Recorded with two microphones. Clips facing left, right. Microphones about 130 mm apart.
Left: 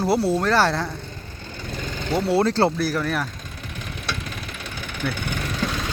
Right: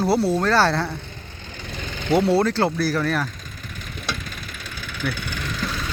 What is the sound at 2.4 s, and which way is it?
Speech, 30° left (ahead or behind).